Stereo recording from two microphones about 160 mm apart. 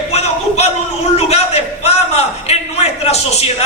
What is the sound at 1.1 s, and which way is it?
A man's voice, 40° left (ahead or behind).